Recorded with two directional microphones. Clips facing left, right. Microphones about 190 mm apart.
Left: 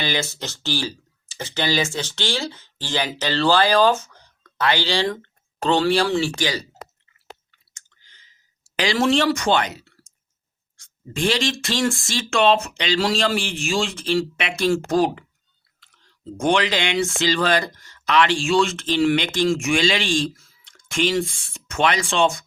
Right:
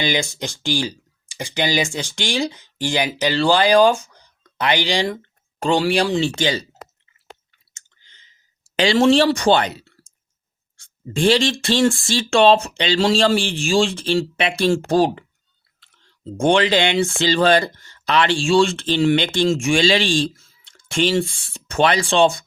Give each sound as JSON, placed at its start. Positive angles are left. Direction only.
{"t": 0.0, "sound": "speech", "side_deg": -15}
{"t": 7.7, "sound": "clicking", "side_deg": -25}
{"t": 10.8, "sound": "speech", "side_deg": -30}